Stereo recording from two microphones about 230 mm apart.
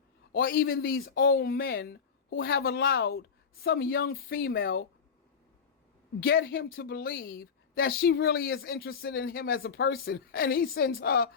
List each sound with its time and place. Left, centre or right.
0.3 s speech: left
3.9 s speech: left
4.2 s speech: left
6.1 s speech: left